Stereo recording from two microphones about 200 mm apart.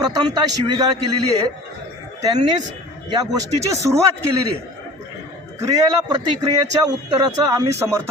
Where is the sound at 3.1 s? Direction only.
15° right (ahead or behind).